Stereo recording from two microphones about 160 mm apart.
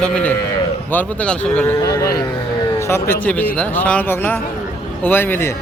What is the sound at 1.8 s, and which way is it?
Speech, 20° left (ahead or behind).